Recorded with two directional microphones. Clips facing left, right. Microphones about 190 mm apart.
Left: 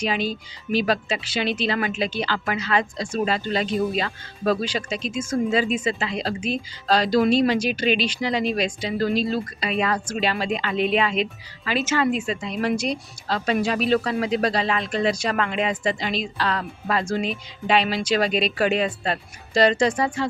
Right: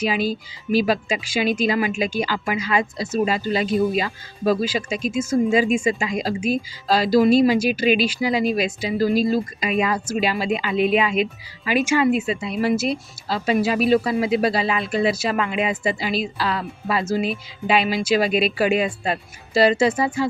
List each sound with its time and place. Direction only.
0.2 s speech: 40° right (ahead or behind)
0.8 s speech: 10° right (ahead or behind)